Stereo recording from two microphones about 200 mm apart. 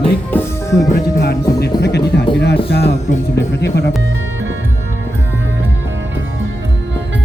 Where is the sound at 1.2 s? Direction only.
55° left (ahead or behind).